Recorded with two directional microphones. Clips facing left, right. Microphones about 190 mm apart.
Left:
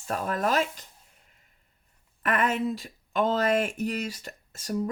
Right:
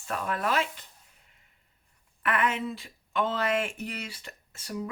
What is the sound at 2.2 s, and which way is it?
Speech, 40° left (ahead or behind).